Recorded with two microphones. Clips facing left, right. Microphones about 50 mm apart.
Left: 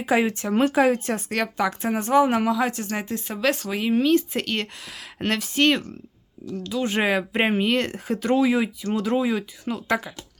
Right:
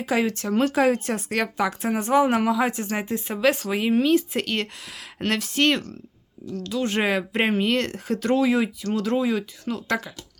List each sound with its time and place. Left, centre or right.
0.0 s speech: centre
0.8 s a woman's voice: centre